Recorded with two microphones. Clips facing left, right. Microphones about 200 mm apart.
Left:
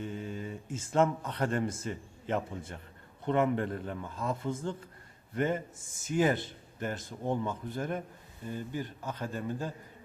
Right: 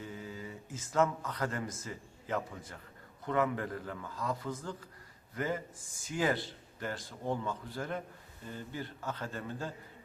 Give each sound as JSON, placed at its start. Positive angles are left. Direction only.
{"t": 0.0, "sound": "a man's voice", "side_deg": 25}